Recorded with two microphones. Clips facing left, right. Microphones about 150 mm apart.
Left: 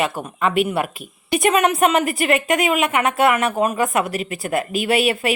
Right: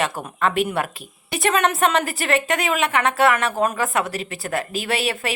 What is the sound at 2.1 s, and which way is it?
Speech, 35° right (ahead or behind).